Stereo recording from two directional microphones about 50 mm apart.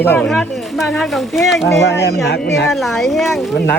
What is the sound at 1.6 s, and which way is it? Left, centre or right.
Speech, left.